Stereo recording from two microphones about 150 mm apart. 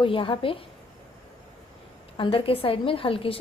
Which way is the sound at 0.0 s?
35° left (ahead or behind).